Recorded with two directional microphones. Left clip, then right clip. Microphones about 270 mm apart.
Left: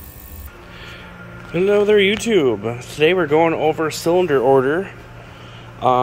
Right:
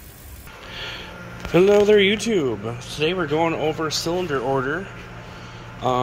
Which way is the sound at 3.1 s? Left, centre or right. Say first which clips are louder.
Left 6 dB; left.